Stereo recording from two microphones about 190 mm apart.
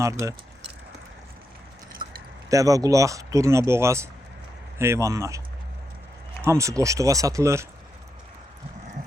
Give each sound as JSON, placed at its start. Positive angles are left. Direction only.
{"t": 0.0, "sound": "speech", "side_deg": -15}
{"t": 2.5, "sound": "speech", "side_deg": -15}
{"t": 6.4, "sound": "speech", "side_deg": -15}